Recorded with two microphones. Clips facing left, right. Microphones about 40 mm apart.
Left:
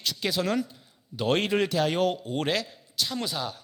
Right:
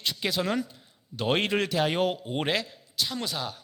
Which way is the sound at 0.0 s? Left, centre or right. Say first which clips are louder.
Even; right.